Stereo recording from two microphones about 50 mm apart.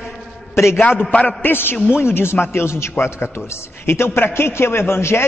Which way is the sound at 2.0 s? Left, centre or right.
Left.